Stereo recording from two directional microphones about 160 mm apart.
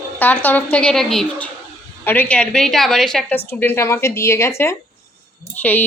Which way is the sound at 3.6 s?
15° left (ahead or behind).